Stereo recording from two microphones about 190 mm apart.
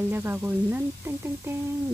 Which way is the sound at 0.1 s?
10° right (ahead or behind).